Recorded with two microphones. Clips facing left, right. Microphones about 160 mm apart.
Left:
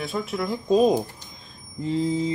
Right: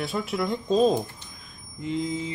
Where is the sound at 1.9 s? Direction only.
35° left (ahead or behind).